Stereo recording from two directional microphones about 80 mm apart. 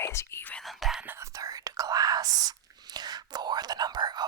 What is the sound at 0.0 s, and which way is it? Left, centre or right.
Whispering, left.